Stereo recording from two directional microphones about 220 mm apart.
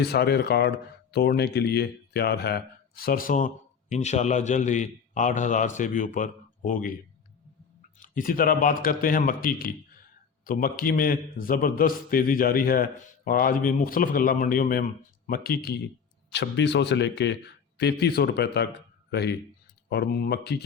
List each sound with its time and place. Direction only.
0.1 s a man's voice: 45° left (ahead or behind)
7.9 s a man's voice: 35° left (ahead or behind)